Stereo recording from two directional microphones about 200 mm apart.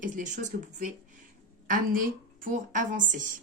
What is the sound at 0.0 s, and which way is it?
A woman's voice, 40° right (ahead or behind).